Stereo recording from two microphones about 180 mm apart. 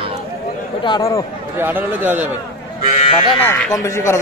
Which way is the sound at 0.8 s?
20° left (ahead or behind).